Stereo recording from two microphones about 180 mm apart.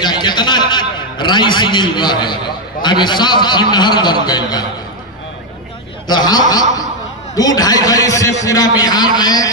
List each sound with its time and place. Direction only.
0.0 s a man's voice: 25° left (ahead or behind)
6.0 s a man's voice: 25° left (ahead or behind)